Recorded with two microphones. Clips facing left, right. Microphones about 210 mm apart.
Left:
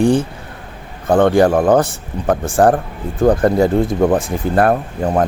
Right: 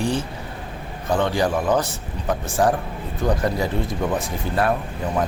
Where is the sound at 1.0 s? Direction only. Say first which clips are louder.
Left 9 dB; 50° left (ahead or behind).